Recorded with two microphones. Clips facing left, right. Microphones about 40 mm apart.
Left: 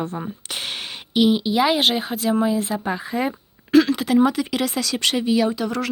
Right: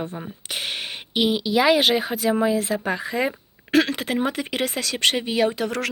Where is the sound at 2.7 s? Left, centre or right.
Right.